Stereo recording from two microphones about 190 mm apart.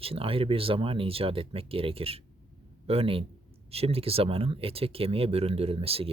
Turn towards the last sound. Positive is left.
turn(degrees=-30)  # may be behind; listen again after turning